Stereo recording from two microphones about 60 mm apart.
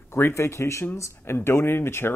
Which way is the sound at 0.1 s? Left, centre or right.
Left.